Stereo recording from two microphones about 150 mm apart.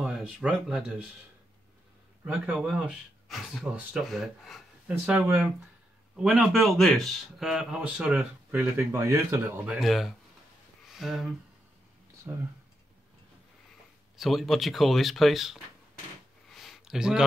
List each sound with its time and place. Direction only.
0.0 s speech: 5° right (ahead or behind)
2.2 s speech: 5° right (ahead or behind)
9.8 s speech: centre (ahead or behind)
12.3 s speech: 15° right (ahead or behind)
14.1 s speech: centre (ahead or behind)
16.4 s a sound: centre (ahead or behind)